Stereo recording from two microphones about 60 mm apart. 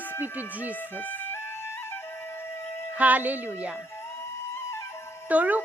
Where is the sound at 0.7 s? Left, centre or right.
Left.